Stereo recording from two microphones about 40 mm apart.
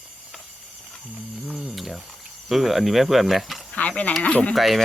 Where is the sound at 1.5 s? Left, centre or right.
Centre.